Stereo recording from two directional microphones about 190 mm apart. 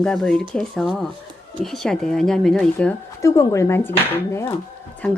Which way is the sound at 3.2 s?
15° left (ahead or behind).